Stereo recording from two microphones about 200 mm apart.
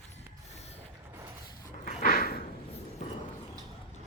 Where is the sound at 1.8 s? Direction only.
45° left (ahead or behind).